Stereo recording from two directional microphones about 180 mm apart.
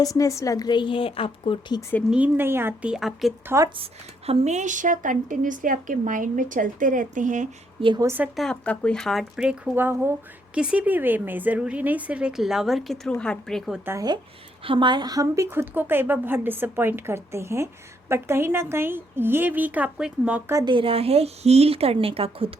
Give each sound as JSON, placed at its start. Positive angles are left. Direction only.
{"t": 0.0, "sound": "a woman's voice", "side_deg": 20}
{"t": 2.0, "sound": "a woman's voice", "side_deg": -5}
{"t": 4.3, "sound": "a woman's voice", "side_deg": -40}
{"t": 7.8, "sound": "speech", "side_deg": -30}
{"t": 8.0, "sound": "a woman's voice", "side_deg": -10}
{"t": 8.4, "sound": "speech", "side_deg": 5}
{"t": 13.8, "sound": "a woman's voice", "side_deg": -20}
{"t": 20.6, "sound": "speech", "side_deg": -25}